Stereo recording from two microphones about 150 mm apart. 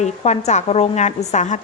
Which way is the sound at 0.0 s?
50° left (ahead or behind).